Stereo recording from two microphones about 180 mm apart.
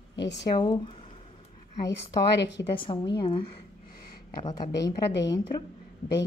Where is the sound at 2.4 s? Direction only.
75° left (ahead or behind).